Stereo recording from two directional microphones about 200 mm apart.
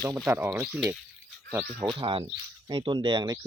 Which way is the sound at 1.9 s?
25° right (ahead or behind).